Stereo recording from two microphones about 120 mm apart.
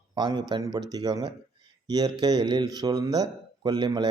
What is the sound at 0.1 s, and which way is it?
Speech, 35° right (ahead or behind).